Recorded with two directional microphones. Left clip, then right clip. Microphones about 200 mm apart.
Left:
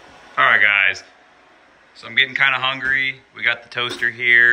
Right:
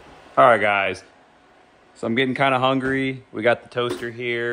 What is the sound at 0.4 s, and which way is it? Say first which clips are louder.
Speech: left 1 dB; 20° right (ahead or behind).